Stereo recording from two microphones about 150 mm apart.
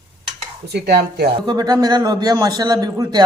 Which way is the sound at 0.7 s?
90° right.